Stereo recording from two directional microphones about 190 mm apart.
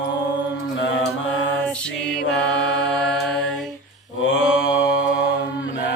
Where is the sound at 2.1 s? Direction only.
60° left (ahead or behind).